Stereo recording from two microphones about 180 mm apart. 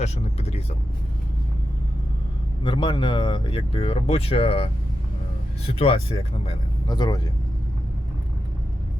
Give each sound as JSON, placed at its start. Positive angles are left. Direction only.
{"t": 0.0, "sound": "speech", "side_deg": 35}
{"t": 2.6, "sound": "speech", "side_deg": 25}